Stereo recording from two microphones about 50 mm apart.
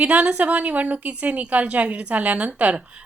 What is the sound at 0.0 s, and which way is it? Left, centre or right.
A woman's voice, right.